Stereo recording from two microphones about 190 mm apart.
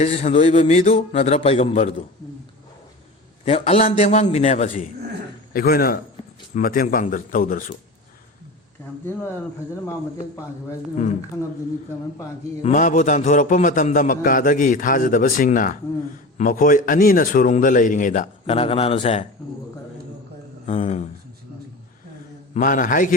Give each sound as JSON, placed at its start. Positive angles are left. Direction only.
{"t": 0.0, "sound": "a man's voice", "side_deg": 35}
{"t": 3.4, "sound": "a man's voice", "side_deg": 30}
{"t": 5.5, "sound": "a man's voice", "side_deg": 55}
{"t": 10.9, "sound": "a man's voice", "side_deg": 40}
{"t": 12.6, "sound": "a man's voice", "side_deg": 40}
{"t": 20.7, "sound": "a sound", "side_deg": 40}
{"t": 22.5, "sound": "a man's voice", "side_deg": 45}